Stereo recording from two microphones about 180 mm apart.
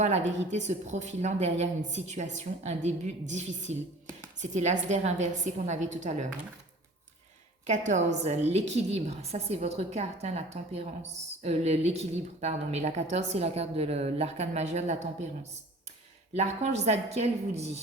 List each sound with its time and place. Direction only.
0.5 s a woman's voice: 40° right (ahead or behind)
7.7 s a woman's voice: 40° right (ahead or behind)
16.3 s a woman's voice: 35° right (ahead or behind)